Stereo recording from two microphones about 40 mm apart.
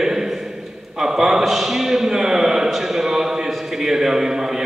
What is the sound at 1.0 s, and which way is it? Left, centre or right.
A man's voice, centre.